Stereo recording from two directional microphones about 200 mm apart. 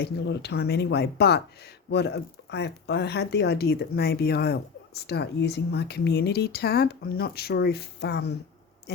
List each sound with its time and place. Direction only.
0.0 s speech: 55° left (ahead or behind)